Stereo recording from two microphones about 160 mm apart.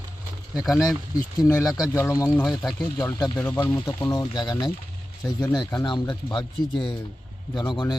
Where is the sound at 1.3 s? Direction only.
20° left (ahead or behind).